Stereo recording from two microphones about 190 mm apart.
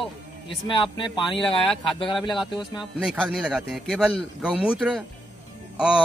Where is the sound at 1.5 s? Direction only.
Centre (ahead or behind).